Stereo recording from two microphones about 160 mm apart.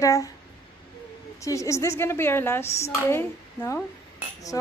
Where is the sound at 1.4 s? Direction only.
20° left (ahead or behind).